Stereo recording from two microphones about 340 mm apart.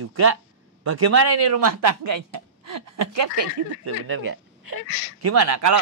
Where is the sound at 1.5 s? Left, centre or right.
Right.